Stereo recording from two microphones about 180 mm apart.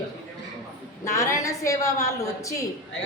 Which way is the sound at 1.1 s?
15° left (ahead or behind).